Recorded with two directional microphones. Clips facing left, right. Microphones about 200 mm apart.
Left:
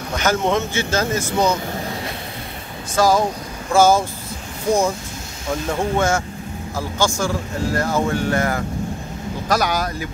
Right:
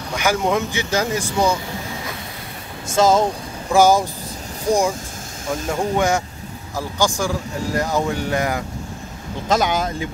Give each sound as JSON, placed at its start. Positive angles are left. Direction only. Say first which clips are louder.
{"t": 0.1, "sound": "speech", "louder": "even", "side_deg": -10}
{"t": 2.9, "sound": "speech", "louder": "right 1 dB", "side_deg": -25}
{"t": 5.7, "sound": "speech", "louder": "even", "side_deg": -15}